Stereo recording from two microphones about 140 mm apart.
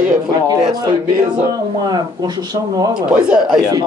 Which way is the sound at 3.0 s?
5° right (ahead or behind).